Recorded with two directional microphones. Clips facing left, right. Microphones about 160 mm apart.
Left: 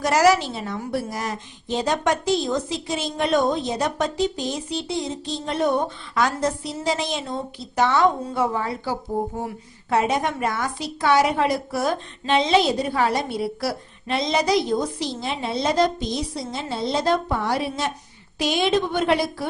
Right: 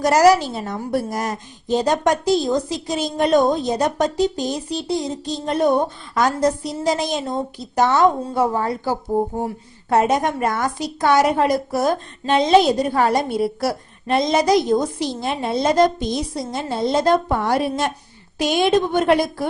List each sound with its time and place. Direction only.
0.0 s a woman's voice: 40° right (ahead or behind)